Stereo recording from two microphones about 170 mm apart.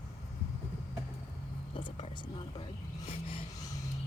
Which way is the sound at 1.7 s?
30° left (ahead or behind).